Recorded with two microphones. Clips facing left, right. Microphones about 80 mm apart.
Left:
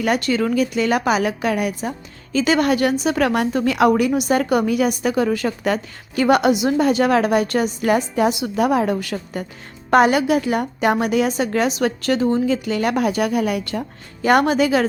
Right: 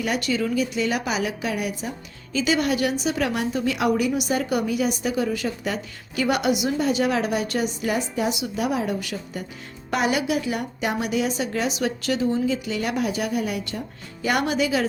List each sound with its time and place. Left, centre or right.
0.0 s a woman's voice: left
6.7 s a woman's voice: left
14.2 s a woman's voice: left